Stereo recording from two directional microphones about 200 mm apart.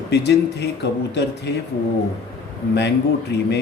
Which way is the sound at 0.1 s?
55° left (ahead or behind).